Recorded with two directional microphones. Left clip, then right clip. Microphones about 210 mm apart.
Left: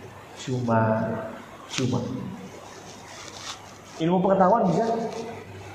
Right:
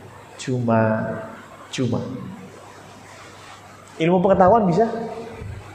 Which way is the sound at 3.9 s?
45° right (ahead or behind).